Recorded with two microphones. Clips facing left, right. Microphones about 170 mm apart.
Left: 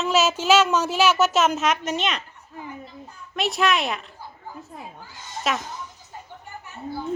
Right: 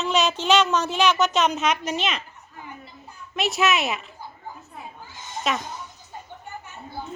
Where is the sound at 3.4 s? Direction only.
Centre (ahead or behind).